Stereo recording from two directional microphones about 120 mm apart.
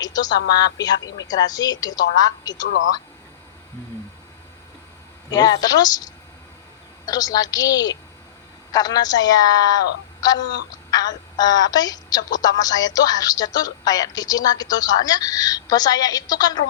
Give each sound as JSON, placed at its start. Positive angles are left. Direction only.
{"t": 0.0, "sound": "a woman's voice", "side_deg": 35}
{"t": 5.3, "sound": "a woman's voice", "side_deg": 35}